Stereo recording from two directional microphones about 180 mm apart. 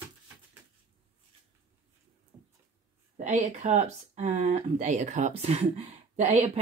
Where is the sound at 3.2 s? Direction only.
40° right (ahead or behind).